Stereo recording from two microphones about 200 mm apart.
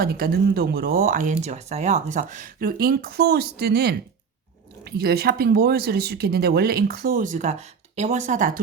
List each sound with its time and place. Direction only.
0.0 s speech: 50° right (ahead or behind)